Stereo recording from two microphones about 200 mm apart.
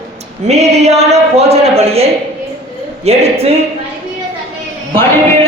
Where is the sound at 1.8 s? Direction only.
30° right (ahead or behind).